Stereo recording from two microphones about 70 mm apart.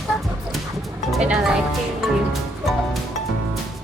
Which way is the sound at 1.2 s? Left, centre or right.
Centre.